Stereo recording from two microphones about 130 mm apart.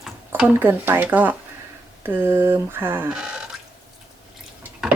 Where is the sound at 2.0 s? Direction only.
15° right (ahead or behind).